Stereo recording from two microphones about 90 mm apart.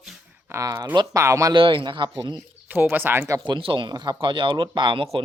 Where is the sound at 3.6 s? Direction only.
70° right (ahead or behind).